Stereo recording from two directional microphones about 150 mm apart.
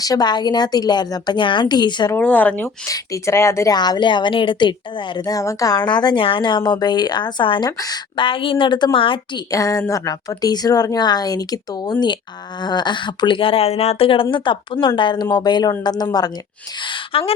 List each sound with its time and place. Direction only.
0.0 s speech: 25° left (ahead or behind)
2.1 s speech: 10° left (ahead or behind); by 9.4 s 35° left (ahead or behind)
9.5 s speech: 25° left (ahead or behind)